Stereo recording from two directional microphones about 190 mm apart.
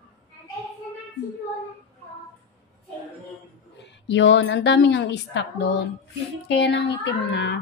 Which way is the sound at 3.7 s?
70° left (ahead or behind).